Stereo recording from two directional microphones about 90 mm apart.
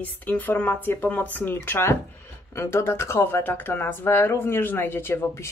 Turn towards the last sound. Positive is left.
turn(degrees=25)  # may be behind; listen again after turning